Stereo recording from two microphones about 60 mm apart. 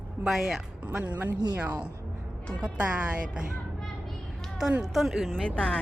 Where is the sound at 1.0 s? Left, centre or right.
Right.